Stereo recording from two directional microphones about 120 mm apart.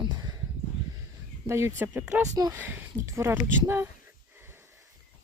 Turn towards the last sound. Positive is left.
turn(degrees=-20)  # may be behind; listen again after turning